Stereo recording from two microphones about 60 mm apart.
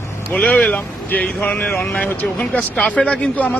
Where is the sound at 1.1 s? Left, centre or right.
Left.